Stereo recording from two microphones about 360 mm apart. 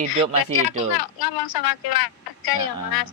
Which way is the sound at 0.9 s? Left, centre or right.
Left.